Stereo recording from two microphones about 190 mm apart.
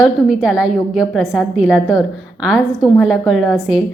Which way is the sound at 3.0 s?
Centre (ahead or behind).